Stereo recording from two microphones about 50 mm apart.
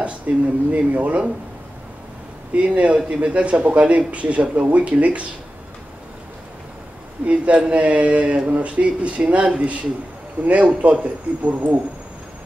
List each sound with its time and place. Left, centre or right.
0.3 s speech: right
2.5 s speech: right
7.2 s speech: right